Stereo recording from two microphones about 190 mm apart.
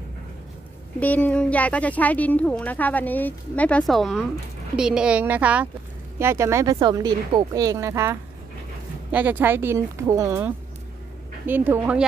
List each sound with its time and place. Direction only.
0.9 s speech: 10° left (ahead or behind); by 12.0 s 10° right (ahead or behind)